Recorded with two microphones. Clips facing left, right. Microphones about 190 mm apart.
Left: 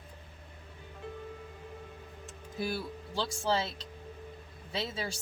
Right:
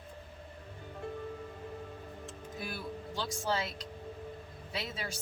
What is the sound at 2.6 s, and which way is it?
Speech, 30° left (ahead or behind).